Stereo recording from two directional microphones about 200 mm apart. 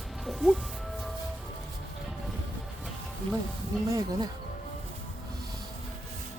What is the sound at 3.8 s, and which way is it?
Insect, 15° right (ahead or behind).